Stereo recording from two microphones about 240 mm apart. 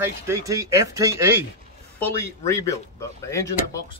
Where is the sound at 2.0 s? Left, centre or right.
Centre.